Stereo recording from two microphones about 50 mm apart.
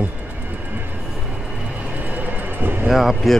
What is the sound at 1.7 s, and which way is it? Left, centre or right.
Vehicle, right.